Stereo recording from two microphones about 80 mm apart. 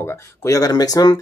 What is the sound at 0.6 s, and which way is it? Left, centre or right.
Speech, left.